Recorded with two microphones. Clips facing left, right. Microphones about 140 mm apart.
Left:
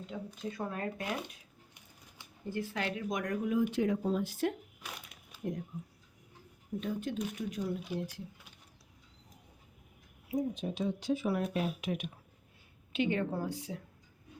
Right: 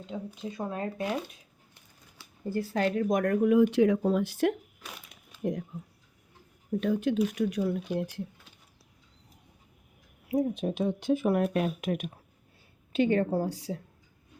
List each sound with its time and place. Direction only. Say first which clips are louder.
0.1 s speech: right 4 dB; 20° right (ahead or behind)
2.4 s speech: right 8 dB; 35° right (ahead or behind); by 4.5 s 75° right (ahead or behind)
5.3 s a sound: right 7 dB; 10° left (ahead or behind)
6.7 s speech: right 9 dB; 75° right (ahead or behind)
10.2 s a woman's voice: right 6 dB; 65° right (ahead or behind); by 13.7 s 40° right (ahead or behind)